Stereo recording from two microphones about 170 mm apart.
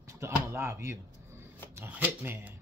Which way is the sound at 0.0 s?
15° right (ahead or behind).